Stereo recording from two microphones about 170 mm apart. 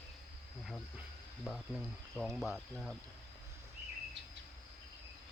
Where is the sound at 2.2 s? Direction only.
Centre (ahead or behind).